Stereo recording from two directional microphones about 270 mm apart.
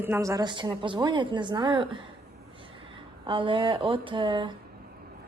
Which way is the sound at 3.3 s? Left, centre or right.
Centre.